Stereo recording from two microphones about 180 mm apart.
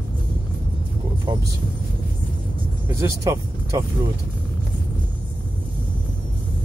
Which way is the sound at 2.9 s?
15° right (ahead or behind).